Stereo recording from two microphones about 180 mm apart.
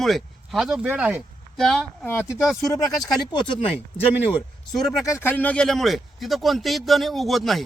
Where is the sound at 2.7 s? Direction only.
20° left (ahead or behind).